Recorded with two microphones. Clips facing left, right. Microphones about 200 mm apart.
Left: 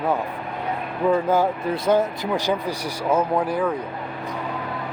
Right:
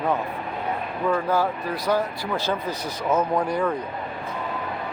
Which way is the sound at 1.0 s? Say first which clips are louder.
Left 4 dB; 20° left (ahead or behind).